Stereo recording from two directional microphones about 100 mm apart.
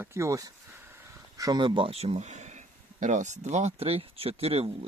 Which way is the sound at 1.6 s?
50° right (ahead or behind).